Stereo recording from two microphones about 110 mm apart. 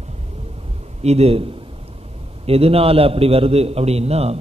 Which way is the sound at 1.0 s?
75° right (ahead or behind).